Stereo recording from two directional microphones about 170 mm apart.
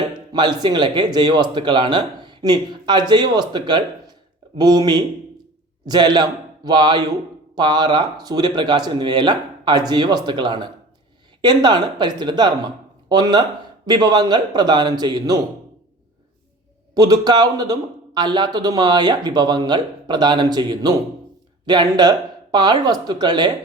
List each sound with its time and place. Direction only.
0.3 s a man's voice: 25° right (ahead or behind)
16.9 s a man's voice: 25° right (ahead or behind)